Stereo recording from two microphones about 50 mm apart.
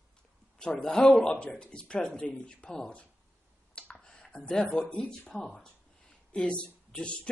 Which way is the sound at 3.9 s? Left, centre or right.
Centre.